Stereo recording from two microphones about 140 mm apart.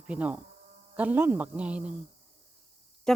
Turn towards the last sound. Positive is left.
turn(degrees=5)  # may be behind; listen again after turning